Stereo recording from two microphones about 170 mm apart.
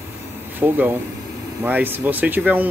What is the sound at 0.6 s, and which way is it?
Speech, 10° right (ahead or behind).